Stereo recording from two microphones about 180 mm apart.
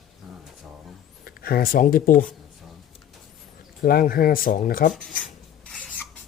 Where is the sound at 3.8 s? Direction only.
55° left (ahead or behind).